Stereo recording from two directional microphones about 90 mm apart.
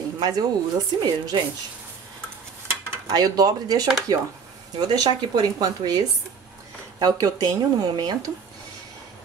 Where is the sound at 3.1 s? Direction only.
45° right (ahead or behind).